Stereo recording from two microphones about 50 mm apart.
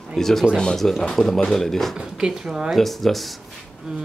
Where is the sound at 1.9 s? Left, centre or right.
Centre.